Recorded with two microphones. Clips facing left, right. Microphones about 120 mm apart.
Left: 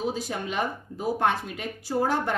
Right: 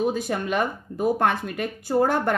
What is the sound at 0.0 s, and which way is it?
A woman's voice, 55° right (ahead or behind).